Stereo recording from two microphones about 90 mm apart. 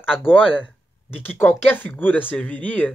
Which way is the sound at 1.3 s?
20° left (ahead or behind).